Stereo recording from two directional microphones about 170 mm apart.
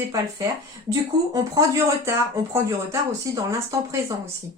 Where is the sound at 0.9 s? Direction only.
20° right (ahead or behind).